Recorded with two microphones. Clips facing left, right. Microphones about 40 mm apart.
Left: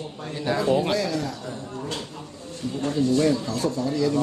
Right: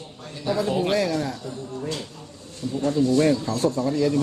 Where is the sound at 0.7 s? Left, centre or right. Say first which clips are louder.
Left 4 dB; centre.